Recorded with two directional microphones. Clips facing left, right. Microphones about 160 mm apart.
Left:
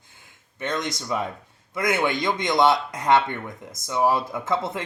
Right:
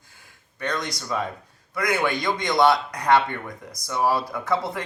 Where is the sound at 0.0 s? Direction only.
20° left (ahead or behind).